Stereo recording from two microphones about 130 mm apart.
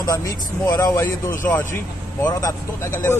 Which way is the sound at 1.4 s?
15° left (ahead or behind).